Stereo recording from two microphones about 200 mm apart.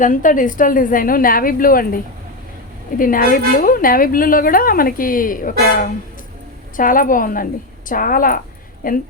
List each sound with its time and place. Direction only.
0.0 s a woman's voice: 40° left (ahead or behind)
3.0 s a woman's voice: 45° left (ahead or behind)
6.7 s a woman's voice: 45° left (ahead or behind)